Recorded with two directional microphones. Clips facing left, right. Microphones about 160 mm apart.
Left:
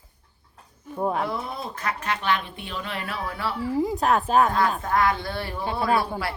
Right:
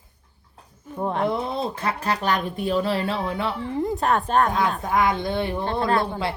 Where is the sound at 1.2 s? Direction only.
20° right (ahead or behind).